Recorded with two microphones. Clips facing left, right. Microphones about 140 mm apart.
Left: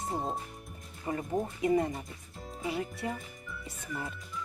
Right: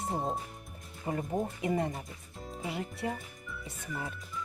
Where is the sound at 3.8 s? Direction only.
Centre (ahead or behind).